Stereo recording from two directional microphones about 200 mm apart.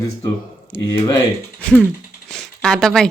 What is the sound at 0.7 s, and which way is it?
Speech, 15° left (ahead or behind).